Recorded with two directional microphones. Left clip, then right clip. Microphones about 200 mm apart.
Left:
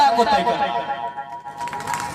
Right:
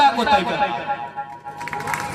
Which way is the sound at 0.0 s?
20° left (ahead or behind).